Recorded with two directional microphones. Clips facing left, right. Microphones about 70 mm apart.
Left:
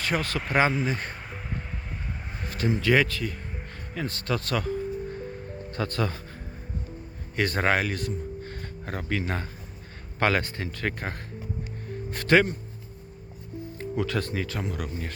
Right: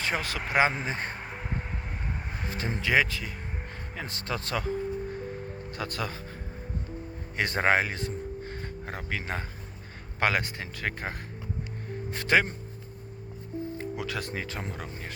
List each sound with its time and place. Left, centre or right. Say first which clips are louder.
0.0 s speech: left 3 dB; centre
0.7 s speech: left 4 dB; right
1.3 s music: right 1 dB; centre
2.2 s a sound: right 1 dB; centre
2.6 s speech: left 3 dB; right
5.7 s speech: left 5 dB; centre
7.3 s speech: even; right
9.0 s a man's voice: left 5 dB; centre
13.9 s speech: left 5 dB; centre